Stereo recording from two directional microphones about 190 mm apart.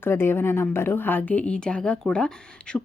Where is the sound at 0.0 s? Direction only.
10° left (ahead or behind).